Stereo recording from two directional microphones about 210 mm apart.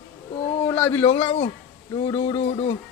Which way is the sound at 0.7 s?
10° left (ahead or behind).